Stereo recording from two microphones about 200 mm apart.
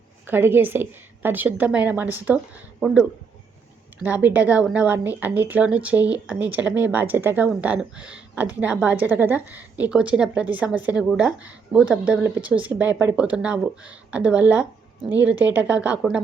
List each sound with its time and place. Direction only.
0.3 s speech: 10° right (ahead or behind)